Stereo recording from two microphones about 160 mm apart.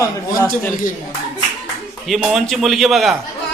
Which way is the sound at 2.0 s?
Centre (ahead or behind).